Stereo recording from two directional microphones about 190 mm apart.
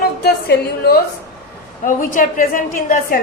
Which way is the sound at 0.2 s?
55° left (ahead or behind).